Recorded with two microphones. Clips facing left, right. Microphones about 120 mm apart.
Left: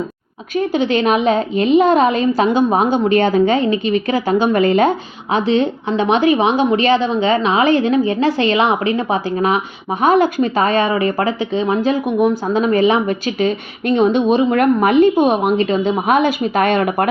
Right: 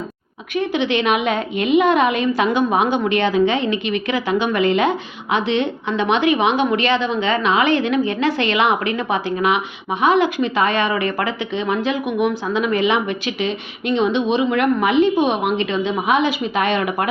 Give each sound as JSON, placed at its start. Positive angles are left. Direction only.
{"t": 0.5, "sound": "a woman's voice", "side_deg": 40}